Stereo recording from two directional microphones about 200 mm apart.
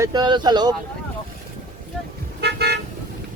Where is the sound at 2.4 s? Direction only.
55° right (ahead or behind).